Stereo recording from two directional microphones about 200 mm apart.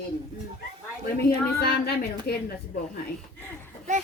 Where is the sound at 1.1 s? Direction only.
50° left (ahead or behind).